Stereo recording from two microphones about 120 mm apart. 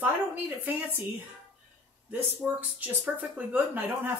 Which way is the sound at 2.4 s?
15° right (ahead or behind).